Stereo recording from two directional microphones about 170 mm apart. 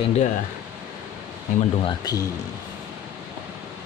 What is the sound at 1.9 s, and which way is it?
Speech, 20° left (ahead or behind).